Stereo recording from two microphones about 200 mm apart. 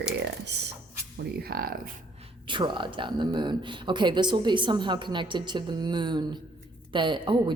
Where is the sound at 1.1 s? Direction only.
50° right (ahead or behind).